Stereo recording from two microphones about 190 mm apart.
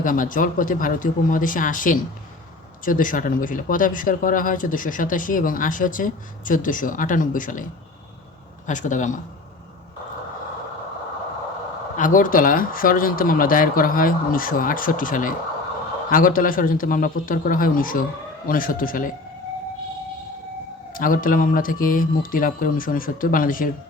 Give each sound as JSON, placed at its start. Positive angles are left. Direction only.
{"t": 0.0, "sound": "speech", "side_deg": 45}
{"t": 8.6, "sound": "speech", "side_deg": 40}
{"t": 11.9, "sound": "speech", "side_deg": 45}
{"t": 20.9, "sound": "speech", "side_deg": 45}